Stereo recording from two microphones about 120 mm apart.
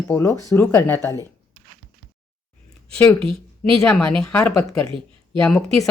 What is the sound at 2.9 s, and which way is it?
Speech, 10° left (ahead or behind).